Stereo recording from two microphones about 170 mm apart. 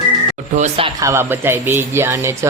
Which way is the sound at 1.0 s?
15° right (ahead or behind).